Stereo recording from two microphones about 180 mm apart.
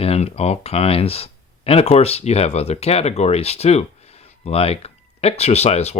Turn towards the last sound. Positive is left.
turn(degrees=35)  # may be behind; listen again after turning